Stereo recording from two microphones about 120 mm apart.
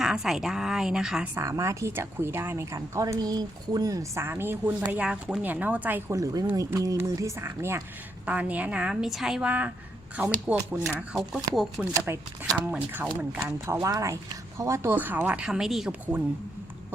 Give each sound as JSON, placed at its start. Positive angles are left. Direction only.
{"t": 0.0, "sound": "a woman's voice", "side_deg": -5}
{"t": 1.4, "sound": "a woman's voice", "side_deg": -25}
{"t": 6.1, "sound": "a woman's voice", "side_deg": -30}
{"t": 10.8, "sound": "a woman's voice", "side_deg": 0}
{"t": 11.9, "sound": "a woman's voice", "side_deg": -20}